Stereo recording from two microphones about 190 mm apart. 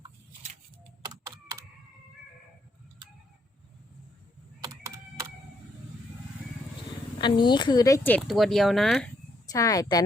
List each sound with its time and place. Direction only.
7.2 s speech: 25° left (ahead or behind); by 9.1 s 5° left (ahead or behind)
9.5 s speech: 20° left (ahead or behind)